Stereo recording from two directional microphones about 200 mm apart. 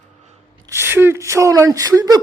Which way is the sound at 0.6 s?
10° right (ahead or behind).